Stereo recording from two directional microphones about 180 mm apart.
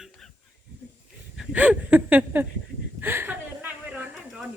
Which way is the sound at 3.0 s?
10° right (ahead or behind).